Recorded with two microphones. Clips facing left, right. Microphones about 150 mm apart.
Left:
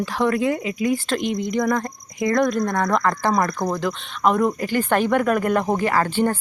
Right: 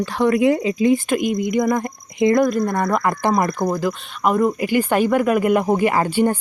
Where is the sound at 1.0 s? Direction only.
5° right (ahead or behind).